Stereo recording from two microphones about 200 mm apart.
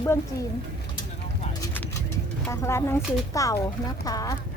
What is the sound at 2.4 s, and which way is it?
A child's voice, 15° left (ahead or behind).